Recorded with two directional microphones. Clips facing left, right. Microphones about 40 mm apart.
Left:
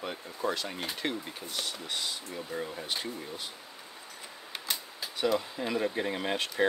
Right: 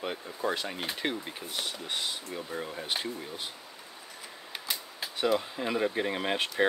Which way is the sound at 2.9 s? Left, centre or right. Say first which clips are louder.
Right 2 dB; right.